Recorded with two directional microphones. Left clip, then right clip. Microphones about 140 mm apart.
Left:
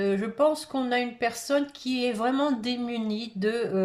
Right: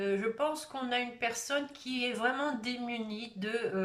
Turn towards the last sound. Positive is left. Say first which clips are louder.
# left 7 dB
turn(degrees=35)  # may be behind; listen again after turning